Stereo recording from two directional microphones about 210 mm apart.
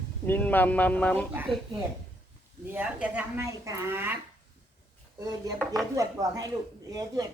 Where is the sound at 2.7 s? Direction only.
5° right (ahead or behind).